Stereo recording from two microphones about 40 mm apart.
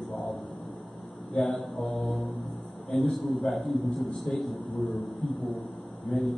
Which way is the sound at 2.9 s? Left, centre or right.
Centre.